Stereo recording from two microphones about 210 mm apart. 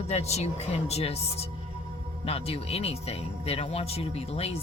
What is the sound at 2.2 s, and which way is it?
Speech, 30° left (ahead or behind).